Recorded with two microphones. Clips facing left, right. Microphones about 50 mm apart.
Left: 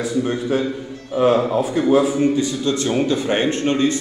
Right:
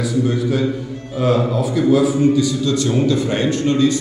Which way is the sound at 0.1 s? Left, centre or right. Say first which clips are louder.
Right 2 dB; left.